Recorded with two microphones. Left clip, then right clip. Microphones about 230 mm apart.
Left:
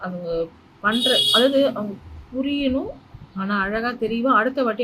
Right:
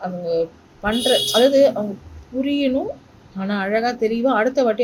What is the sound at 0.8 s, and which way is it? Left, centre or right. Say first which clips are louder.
Speech: even; centre.